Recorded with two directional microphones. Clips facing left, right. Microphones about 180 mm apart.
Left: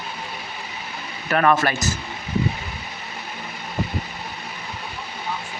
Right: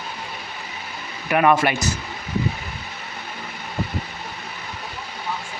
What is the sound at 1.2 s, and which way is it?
Speech, 10° right (ahead or behind).